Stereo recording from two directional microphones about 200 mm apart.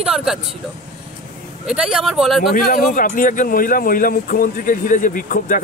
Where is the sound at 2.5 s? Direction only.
45° left (ahead or behind).